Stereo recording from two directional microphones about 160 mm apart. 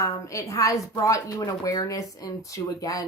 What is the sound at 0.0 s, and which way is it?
Speech, 20° left (ahead or behind).